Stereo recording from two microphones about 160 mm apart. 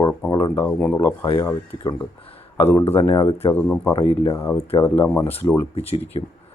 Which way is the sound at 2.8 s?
35° left (ahead or behind).